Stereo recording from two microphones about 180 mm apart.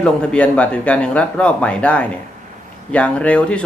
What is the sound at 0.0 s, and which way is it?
Speech, 5° left (ahead or behind).